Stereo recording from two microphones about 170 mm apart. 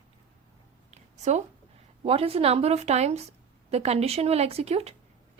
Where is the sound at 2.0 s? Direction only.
35° right (ahead or behind).